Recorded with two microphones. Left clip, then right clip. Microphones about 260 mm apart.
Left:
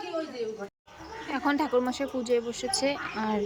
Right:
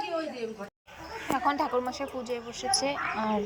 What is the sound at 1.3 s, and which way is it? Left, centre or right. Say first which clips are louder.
A woman's voice: even; centre.